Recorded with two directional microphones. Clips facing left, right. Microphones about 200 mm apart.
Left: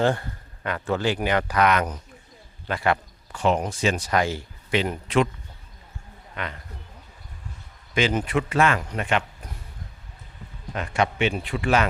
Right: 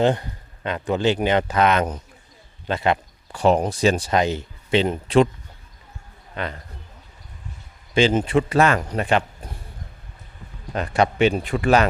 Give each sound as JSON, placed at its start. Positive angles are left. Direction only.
{"t": 0.0, "sound": "speech", "side_deg": -20}
{"t": 3.3, "sound": "speech", "side_deg": -35}
{"t": 6.3, "sound": "a man's voice", "side_deg": -35}
{"t": 7.9, "sound": "speech", "side_deg": -30}
{"t": 10.8, "sound": "speech", "side_deg": -35}